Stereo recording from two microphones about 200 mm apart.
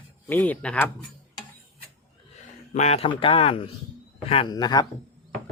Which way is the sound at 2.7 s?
35° left (ahead or behind).